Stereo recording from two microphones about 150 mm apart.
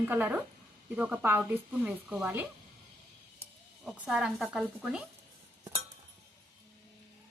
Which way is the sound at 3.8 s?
5° right (ahead or behind).